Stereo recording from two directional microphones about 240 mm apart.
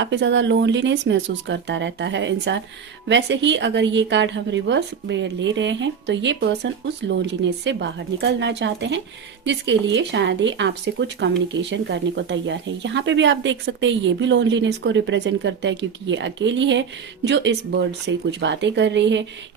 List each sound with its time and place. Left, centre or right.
0.0 s speech: right